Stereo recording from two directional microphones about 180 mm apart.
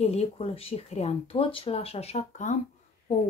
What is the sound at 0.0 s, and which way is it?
A woman's voice, 35° left (ahead or behind).